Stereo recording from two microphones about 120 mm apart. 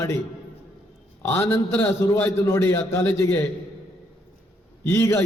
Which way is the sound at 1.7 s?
15° left (ahead or behind).